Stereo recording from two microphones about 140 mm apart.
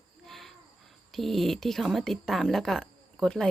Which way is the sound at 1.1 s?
Centre (ahead or behind).